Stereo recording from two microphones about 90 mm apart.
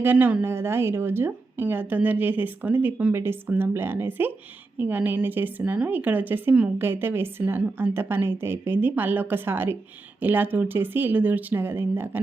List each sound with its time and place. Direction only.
0.0 s speech: 20° right (ahead or behind)